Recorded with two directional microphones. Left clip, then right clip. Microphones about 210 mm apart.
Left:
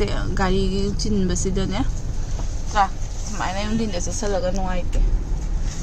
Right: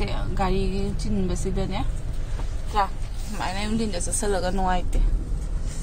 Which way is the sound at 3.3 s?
Centre (ahead or behind).